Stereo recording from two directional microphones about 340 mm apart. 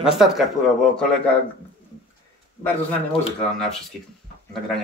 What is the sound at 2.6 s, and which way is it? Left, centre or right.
Speech, centre.